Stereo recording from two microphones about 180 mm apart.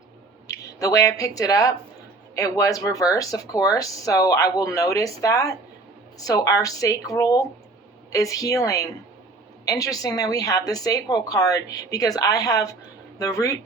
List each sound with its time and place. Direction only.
0.4 s speech: 20° left (ahead or behind)